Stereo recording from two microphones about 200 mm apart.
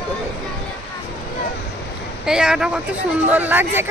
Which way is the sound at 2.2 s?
5° right (ahead or behind).